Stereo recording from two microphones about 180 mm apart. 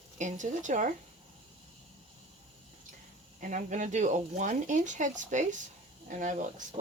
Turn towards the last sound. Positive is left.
turn(degrees=-45)  # may be behind; listen again after turning